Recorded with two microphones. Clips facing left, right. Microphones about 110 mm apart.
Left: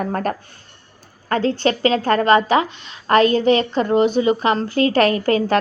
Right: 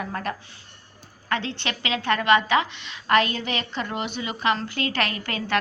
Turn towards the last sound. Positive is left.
turn(degrees=35)  # may be behind; listen again after turning